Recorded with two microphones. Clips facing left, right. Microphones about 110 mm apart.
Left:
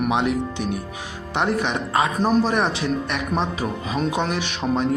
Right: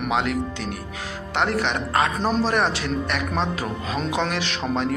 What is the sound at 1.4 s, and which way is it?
Speech, 65° right (ahead or behind).